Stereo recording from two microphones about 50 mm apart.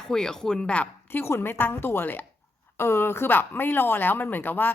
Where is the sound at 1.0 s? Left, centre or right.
Left.